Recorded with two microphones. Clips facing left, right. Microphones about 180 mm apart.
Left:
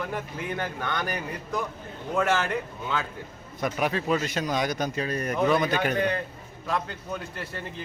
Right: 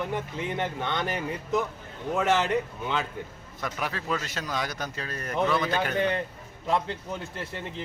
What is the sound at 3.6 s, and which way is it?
Speech, 20° left (ahead or behind).